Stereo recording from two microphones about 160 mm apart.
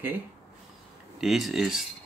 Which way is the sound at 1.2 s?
Centre (ahead or behind).